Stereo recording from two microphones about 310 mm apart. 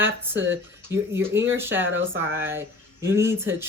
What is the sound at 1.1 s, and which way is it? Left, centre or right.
Speech, centre.